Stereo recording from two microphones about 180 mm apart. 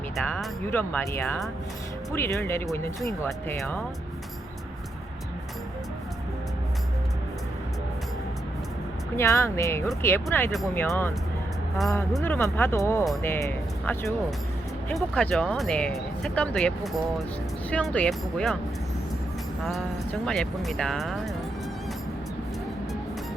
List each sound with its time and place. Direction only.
0.2 s speech: 10° left (ahead or behind)
3.2 s speech: centre (ahead or behind)
9.1 s speech: 15° left (ahead or behind)
12.2 s speech: 10° left (ahead or behind)
20.2 s speech: 5° left (ahead or behind)